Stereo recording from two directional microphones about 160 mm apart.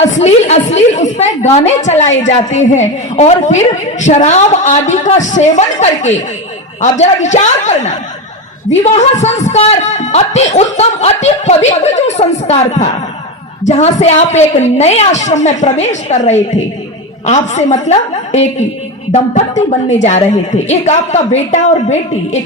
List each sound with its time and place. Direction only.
0.0 s a woman's voice: 45° left (ahead or behind)